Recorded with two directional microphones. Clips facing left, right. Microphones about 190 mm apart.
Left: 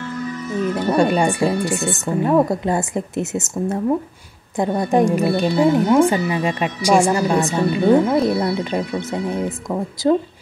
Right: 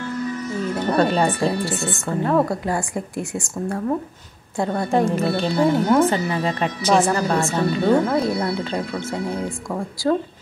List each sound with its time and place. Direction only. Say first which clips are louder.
0.7 s a woman's voice: left 2 dB; 15° left (ahead or behind)